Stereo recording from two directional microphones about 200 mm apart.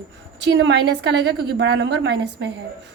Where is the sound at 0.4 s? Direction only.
60° right (ahead or behind).